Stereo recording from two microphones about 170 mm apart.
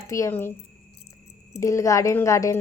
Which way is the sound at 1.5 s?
20° left (ahead or behind).